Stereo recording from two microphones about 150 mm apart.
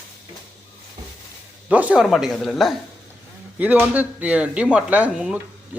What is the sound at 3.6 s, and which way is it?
Speech, 10° right (ahead or behind).